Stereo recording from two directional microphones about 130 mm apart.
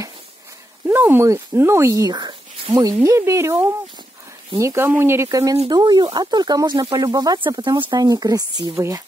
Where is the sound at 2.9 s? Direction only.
20° right (ahead or behind).